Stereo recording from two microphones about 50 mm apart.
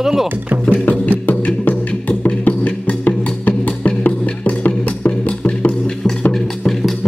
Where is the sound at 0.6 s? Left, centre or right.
Left.